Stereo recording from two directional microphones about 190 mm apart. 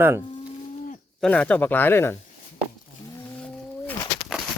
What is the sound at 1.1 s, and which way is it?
Speech, 5° left (ahead or behind).